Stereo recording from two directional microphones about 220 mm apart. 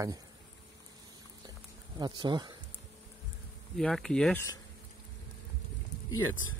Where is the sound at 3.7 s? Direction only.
Centre (ahead or behind).